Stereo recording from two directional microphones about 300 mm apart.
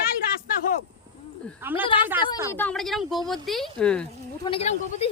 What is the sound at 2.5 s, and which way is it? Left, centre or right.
Speech, centre.